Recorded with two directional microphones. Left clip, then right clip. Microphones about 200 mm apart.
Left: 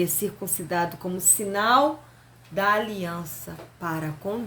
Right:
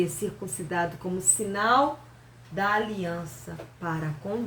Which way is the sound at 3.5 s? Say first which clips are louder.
Even; 65° left (ahead or behind).